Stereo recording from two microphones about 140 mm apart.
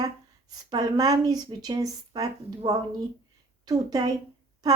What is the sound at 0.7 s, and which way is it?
Speech, 25° right (ahead or behind).